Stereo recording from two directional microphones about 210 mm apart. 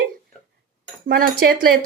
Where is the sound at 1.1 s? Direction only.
45° right (ahead or behind).